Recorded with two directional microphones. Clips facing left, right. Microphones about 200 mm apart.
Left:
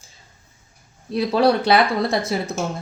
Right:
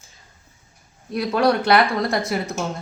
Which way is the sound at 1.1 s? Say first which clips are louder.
Left 2 dB; 30° left (ahead or behind).